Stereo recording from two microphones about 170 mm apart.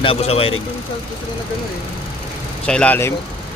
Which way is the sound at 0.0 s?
35° left (ahead or behind).